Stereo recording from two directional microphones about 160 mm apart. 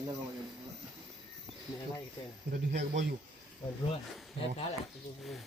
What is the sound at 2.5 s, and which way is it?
Speech, 75° right (ahead or behind).